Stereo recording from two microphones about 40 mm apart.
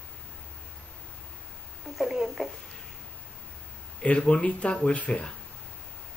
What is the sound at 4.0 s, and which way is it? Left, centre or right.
Speech, left.